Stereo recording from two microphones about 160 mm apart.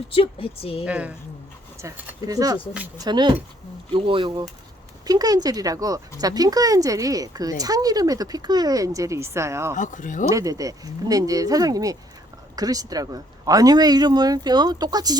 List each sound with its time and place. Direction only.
0.1 s speech: 35° left (ahead or behind)
0.9 s a woman's voice: 10° right (ahead or behind)
1.8 s speech: 20° right (ahead or behind)
9.7 s speech: 50° left (ahead or behind)
10.2 s speech: 20° right (ahead or behind)